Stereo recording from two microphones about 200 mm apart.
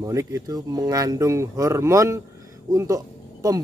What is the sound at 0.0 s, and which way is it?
Speech, 15° right (ahead or behind).